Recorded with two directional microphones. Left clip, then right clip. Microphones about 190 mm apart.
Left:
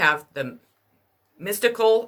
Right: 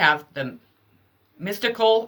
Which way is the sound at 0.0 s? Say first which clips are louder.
Right 1 dB; 45° left (ahead or behind).